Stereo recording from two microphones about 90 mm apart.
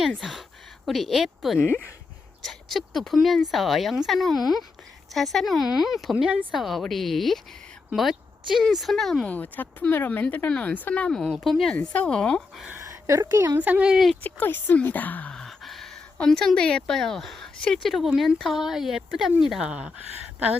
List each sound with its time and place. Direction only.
0.2 s a woman's voice: centre (ahead or behind)
1.5 s speech: 15° right (ahead or behind)
2.4 s a woman's voice: centre (ahead or behind)
9.2 s speech: 20° left (ahead or behind)
11.4 s speech: 5° left (ahead or behind)
12.7 s a sound: 30° right (ahead or behind)
13.6 s speech: 15° right (ahead or behind)
13.9 s a woman's voice: centre (ahead or behind)
14.2 s speech: 20° left (ahead or behind)
15.4 s a sound: centre (ahead or behind)
16.1 s a woman's voice: 5° left (ahead or behind); by 19.9 s 10° right (ahead or behind)